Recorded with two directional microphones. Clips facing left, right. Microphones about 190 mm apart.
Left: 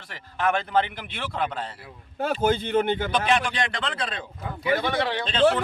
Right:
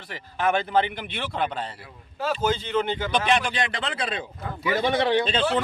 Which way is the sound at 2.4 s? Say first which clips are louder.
Left 3 dB; 55° left (ahead or behind).